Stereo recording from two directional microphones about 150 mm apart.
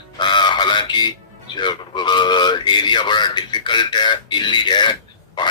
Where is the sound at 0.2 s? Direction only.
30° left (ahead or behind).